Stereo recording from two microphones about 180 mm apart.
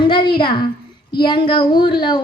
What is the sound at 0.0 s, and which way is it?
A woman's voice, 30° left (ahead or behind).